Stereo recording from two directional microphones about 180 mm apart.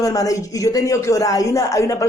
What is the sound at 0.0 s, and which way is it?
Speech, 20° left (ahead or behind).